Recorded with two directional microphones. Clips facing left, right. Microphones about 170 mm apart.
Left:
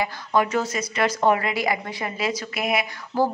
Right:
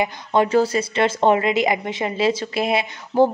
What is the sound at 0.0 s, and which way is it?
Speech, 25° right (ahead or behind).